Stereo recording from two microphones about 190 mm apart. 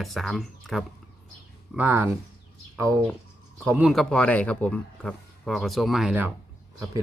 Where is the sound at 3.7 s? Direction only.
5° right (ahead or behind).